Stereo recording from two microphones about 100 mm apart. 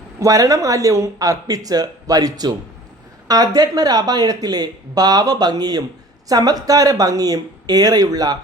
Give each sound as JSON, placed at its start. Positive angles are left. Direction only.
{"t": 0.2, "sound": "speech", "side_deg": -35}